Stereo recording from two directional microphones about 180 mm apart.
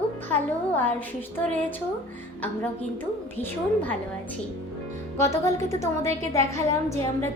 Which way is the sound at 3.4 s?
10° left (ahead or behind).